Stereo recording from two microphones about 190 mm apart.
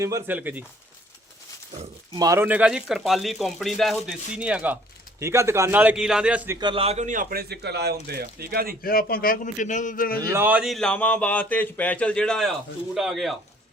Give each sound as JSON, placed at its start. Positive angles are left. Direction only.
{"t": 0.0, "sound": "a man's voice", "side_deg": -15}
{"t": 2.1, "sound": "a man's voice", "side_deg": -15}
{"t": 6.6, "sound": "a man's voice", "side_deg": -25}
{"t": 8.8, "sound": "a man's voice", "side_deg": 50}
{"t": 10.3, "sound": "speech", "side_deg": -10}